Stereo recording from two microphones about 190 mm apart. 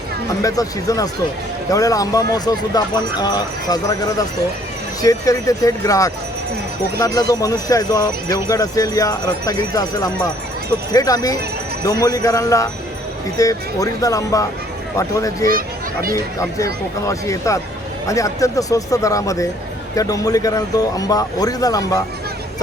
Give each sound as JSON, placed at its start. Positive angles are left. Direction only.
{"t": 0.4, "sound": "speech", "side_deg": 20}
{"t": 7.2, "sound": "speech", "side_deg": 20}
{"t": 15.4, "sound": "a child's voice", "side_deg": -50}
{"t": 16.1, "sound": "speech", "side_deg": 15}